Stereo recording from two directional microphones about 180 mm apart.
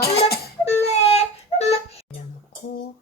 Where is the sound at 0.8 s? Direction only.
35° left (ahead or behind).